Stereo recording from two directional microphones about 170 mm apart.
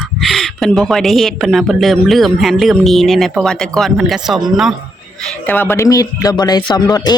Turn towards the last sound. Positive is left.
turn(degrees=25)  # may be behind; listen again after turning